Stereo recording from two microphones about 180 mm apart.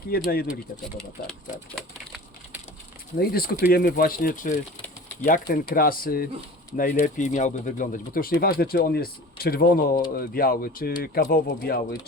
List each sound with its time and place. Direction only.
0.1 s speech: 60° left (ahead or behind)
1.3 s speech: centre (ahead or behind)
3.2 s speech: 55° left (ahead or behind)
7.0 s speech: 45° left (ahead or behind)